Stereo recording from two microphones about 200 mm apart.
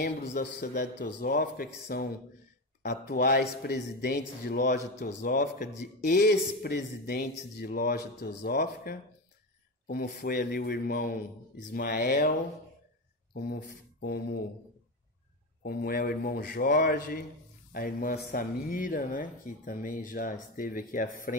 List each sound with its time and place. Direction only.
0.3 s speech: 55° left (ahead or behind)
13.3 s speech: 55° left (ahead or behind)
15.6 s speech: 50° left (ahead or behind)